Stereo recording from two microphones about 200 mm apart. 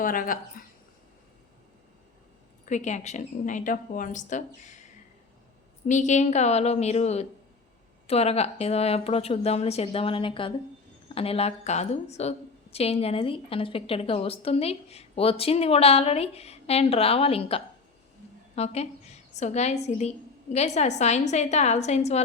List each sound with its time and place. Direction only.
0.0 s speech: 45° left (ahead or behind)
2.6 s a woman's voice: 35° left (ahead or behind)
5.9 s a woman's voice: 35° left (ahead or behind)